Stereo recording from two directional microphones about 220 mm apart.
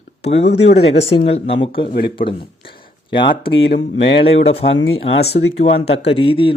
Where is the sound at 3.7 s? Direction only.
55° left (ahead or behind).